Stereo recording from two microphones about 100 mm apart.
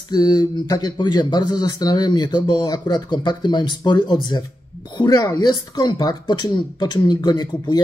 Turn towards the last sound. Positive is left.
turn(degrees=45)  # may be behind; listen again after turning